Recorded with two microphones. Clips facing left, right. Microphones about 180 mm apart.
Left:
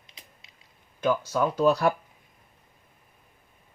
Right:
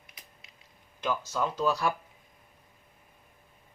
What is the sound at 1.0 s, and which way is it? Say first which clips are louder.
Speech: left 6 dB; 55° left (ahead or behind).